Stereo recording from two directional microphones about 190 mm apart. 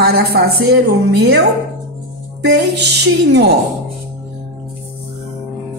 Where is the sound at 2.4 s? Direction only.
60° right (ahead or behind).